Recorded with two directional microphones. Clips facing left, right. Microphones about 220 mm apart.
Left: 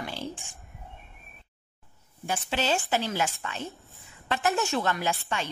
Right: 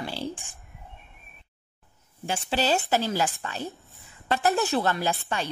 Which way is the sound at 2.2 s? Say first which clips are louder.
Right 2 dB; 30° right (ahead or behind).